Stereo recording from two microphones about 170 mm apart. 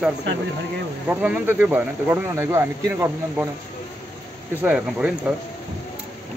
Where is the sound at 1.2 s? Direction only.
10° right (ahead or behind).